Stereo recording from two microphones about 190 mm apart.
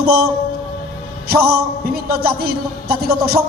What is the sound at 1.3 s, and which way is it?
A man's voice, 55° right (ahead or behind).